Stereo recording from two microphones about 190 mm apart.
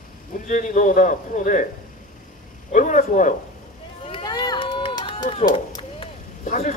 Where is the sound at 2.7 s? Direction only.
40° left (ahead or behind).